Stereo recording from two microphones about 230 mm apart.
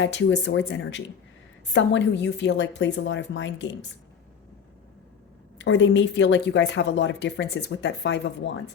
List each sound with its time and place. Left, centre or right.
0.0 s a woman's voice: left
5.5 s a woman's voice: left